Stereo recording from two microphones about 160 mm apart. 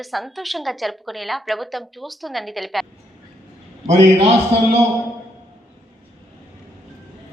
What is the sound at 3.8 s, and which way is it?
Speech, 40° right (ahead or behind).